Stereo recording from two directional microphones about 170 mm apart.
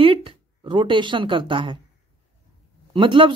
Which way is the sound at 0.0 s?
30° right (ahead or behind).